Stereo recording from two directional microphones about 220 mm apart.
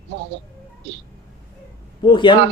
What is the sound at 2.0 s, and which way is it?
Speech, 20° left (ahead or behind).